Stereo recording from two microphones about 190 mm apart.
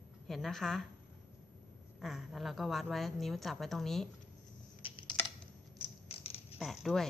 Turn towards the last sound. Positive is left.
turn(degrees=0)  # may be behind; listen again after turning